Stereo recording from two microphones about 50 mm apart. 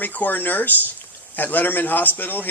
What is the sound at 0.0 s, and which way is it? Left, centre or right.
Speech, left.